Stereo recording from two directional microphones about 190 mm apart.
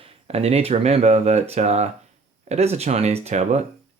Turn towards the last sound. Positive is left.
turn(degrees=-35)  # may be behind; listen again after turning